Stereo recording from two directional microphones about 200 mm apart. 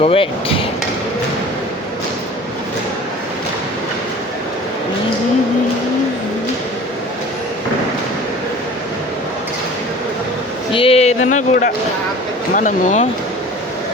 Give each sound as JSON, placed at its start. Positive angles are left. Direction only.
{"t": 0.0, "sound": "speech", "side_deg": 30}
{"t": 10.7, "sound": "speech", "side_deg": 25}